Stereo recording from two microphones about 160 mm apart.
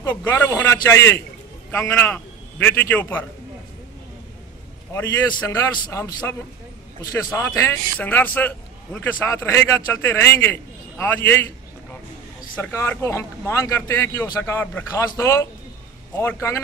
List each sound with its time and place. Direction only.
0.1 s a man's voice: 10° left (ahead or behind)
5.5 s a man's voice: 20° left (ahead or behind)
7.3 s a man's voice: 15° left (ahead or behind)
12.5 s a man's voice: 10° left (ahead or behind)